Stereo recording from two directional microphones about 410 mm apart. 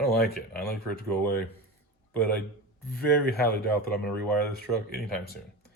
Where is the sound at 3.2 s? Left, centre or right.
Left.